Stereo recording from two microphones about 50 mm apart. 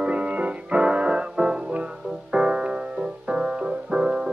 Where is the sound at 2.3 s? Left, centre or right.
Centre.